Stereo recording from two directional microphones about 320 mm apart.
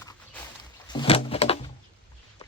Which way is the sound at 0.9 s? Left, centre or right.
Centre.